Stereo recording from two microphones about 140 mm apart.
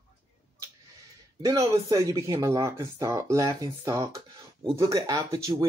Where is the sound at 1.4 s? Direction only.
20° right (ahead or behind).